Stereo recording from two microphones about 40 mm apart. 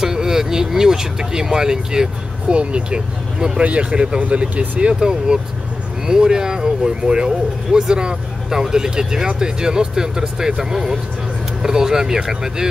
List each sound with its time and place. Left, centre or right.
0.0 s speech: centre
2.4 s speech: right